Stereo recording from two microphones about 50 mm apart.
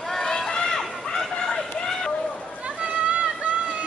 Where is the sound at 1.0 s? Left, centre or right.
Centre.